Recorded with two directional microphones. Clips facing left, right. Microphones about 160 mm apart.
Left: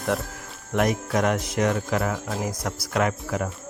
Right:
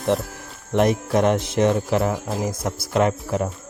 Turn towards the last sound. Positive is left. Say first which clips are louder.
# right 4 dB
turn(degrees=-30)  # may be behind; listen again after turning